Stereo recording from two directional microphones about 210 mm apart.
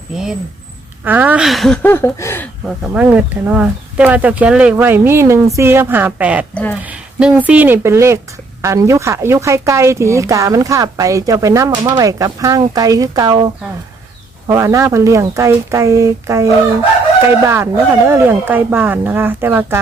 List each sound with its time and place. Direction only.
1.0 s speech: 10° right (ahead or behind); by 2.5 s 10° left (ahead or behind)
2.6 s speech: 5° right (ahead or behind)
6.5 s speech: 5° left (ahead or behind)
6.8 s speech: 5° right (ahead or behind)